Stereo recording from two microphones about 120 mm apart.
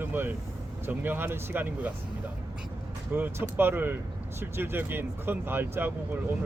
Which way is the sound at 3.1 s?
15° right (ahead or behind).